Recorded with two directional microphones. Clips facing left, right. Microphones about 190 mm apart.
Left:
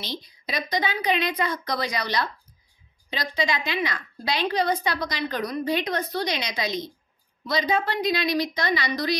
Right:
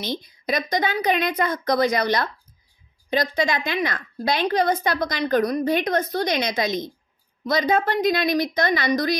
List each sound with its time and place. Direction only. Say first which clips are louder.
0.0 s a woman's voice: right 6 dB; 50° right (ahead or behind)